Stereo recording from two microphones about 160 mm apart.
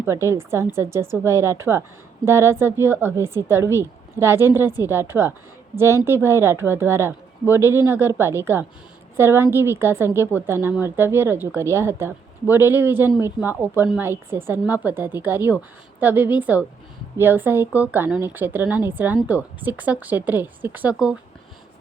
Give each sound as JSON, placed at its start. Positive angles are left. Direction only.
{"t": 0.0, "sound": "speech", "side_deg": -15}